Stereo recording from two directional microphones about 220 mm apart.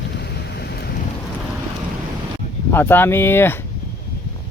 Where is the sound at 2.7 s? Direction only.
10° left (ahead or behind).